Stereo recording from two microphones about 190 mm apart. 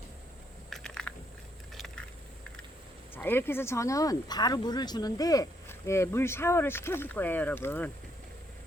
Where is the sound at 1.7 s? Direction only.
Centre (ahead or behind).